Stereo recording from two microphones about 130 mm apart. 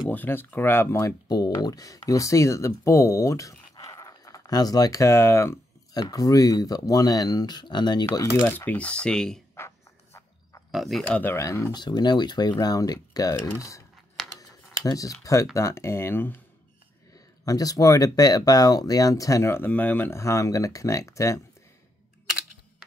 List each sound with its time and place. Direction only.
0.1 s speech: 15° left (ahead or behind)
8.5 s speech: 15° left (ahead or behind)
9.6 s insect: 20° left (ahead or behind)
10.7 s speech: centre (ahead or behind)
11.1 s speech: 15° left (ahead or behind)
11.8 s speech: 35° left (ahead or behind)
13.6 s cutlery: 25° left (ahead or behind)
14.8 s speech: 25° left (ahead or behind)
17.5 s speech: 25° left (ahead or behind)